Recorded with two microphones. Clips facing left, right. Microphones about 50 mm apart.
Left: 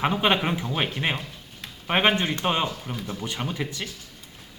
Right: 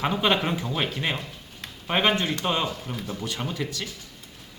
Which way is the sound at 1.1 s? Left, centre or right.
Centre.